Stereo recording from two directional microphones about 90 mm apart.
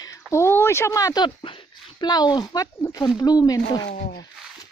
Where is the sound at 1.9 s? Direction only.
50° left (ahead or behind).